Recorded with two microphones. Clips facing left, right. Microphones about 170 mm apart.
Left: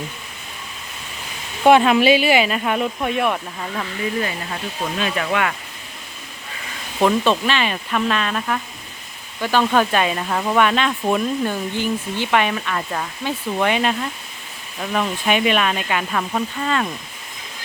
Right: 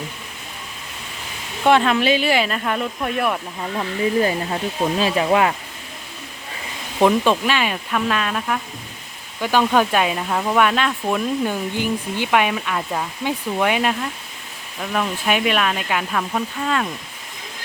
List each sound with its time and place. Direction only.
1.6 s speech: 10° left (ahead or behind)
4.2 s speech: 30° right (ahead or behind)
7.0 s speech: 10° right (ahead or behind)
11.4 s speech: 10° right (ahead or behind)